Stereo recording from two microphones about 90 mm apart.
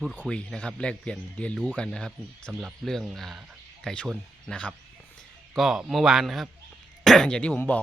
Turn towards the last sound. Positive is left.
turn(degrees=15)  # may be behind; listen again after turning